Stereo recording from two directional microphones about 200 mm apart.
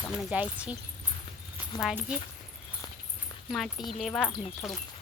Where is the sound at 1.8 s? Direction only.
5° right (ahead or behind).